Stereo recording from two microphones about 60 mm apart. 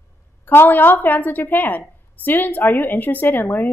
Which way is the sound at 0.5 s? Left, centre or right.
Left.